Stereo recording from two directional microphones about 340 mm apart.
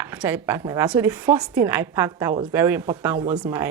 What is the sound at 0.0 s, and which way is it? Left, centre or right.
A woman's voice, centre.